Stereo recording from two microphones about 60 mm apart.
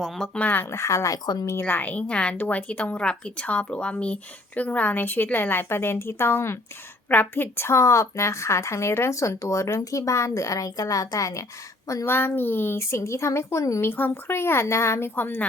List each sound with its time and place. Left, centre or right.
0.3 s speech: left
0.6 s a woman's voice: left
1.6 s speech: left
2.4 s speech: left
7.1 s a woman's voice: left
12.0 s speech: left
12.8 s speech: left
13.8 s speech: left
15.1 s speech: left